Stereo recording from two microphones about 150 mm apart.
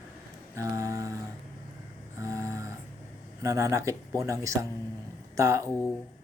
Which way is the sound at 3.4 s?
20° right (ahead or behind).